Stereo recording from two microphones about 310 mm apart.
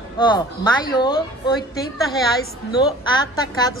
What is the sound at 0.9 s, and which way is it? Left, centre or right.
Speech, centre.